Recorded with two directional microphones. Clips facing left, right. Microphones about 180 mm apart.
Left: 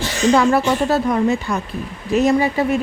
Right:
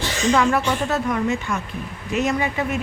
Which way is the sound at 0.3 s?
35° left (ahead or behind).